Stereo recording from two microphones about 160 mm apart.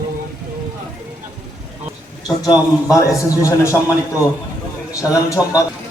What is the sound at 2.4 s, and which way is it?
A man's voice, 20° left (ahead or behind).